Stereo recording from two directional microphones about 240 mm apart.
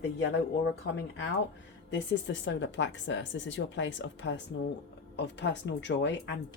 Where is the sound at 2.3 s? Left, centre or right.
Left.